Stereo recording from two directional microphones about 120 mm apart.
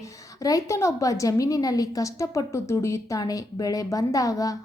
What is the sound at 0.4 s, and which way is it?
A woman's voice, 25° left (ahead or behind).